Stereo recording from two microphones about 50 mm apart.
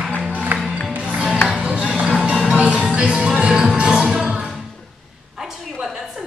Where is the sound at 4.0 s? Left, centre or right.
Centre.